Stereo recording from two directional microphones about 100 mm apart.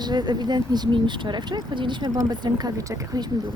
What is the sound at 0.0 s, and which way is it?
Speech, 45° right (ahead or behind).